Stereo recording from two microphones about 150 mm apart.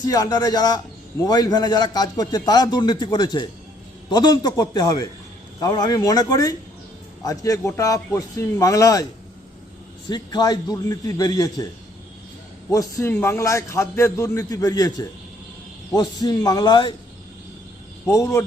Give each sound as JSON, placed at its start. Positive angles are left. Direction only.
{"t": 0.0, "sound": "a man's voice", "side_deg": 25}
{"t": 10.1, "sound": "a man's voice", "side_deg": 30}
{"t": 12.7, "sound": "a man's voice", "side_deg": 20}
{"t": 18.1, "sound": "a man's voice", "side_deg": 20}